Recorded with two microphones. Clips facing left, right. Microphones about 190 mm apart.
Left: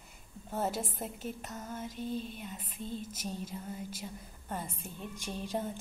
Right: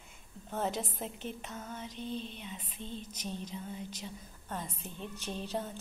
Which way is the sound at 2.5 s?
45° left (ahead or behind).